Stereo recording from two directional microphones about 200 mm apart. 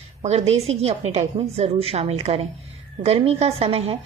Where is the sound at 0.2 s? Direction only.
30° right (ahead or behind).